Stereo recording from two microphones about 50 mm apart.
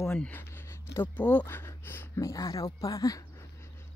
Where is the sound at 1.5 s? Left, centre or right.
Left.